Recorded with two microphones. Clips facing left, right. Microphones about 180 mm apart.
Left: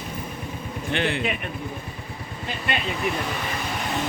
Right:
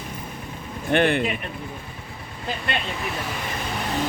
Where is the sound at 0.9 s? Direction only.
55° right (ahead or behind).